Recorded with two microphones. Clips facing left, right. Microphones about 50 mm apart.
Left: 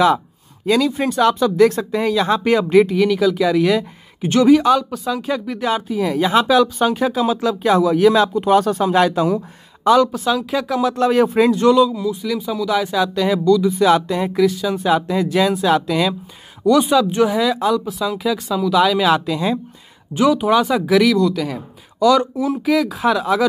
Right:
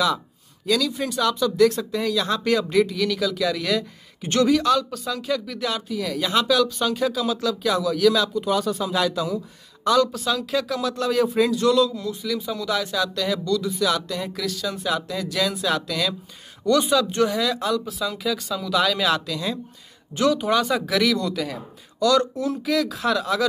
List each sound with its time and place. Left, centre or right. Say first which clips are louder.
0.7 s speech: left 6 dB; left
4.9 s speech: left 6 dB; centre
5.2 s speech: left 4 dB; left
9.8 s speech: left 6 dB; left
11.8 s speech: left 6 dB; centre
12.1 s speech: left 5 dB; centre
12.8 s speech: left 6 dB; centre
13.7 s speech: left 9 dB; left
14.4 s speech: left 12 dB; centre
16.6 s speech: left 5 dB; centre
19.2 s speech: left 8 dB; left
20.2 s speech: left 5 dB; centre
21.5 s speech: left 5 dB; centre